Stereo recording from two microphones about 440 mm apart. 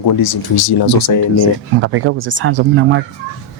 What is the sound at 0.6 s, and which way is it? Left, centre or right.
Speech, left.